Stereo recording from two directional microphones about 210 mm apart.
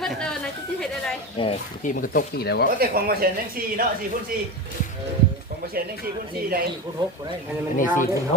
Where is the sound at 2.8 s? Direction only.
45° right (ahead or behind).